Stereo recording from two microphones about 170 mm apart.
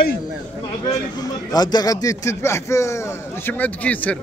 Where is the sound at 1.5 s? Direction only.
25° left (ahead or behind).